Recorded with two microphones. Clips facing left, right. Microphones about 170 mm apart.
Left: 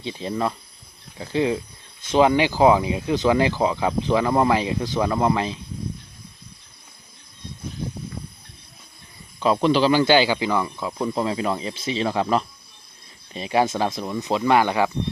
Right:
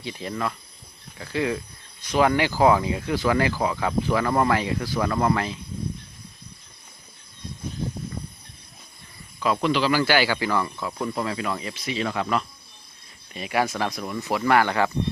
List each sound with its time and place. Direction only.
0.0 s speech: 25° left (ahead or behind)
9.4 s speech: 30° left (ahead or behind)